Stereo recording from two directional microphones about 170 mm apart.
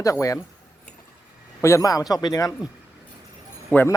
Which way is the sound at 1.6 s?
20° left (ahead or behind).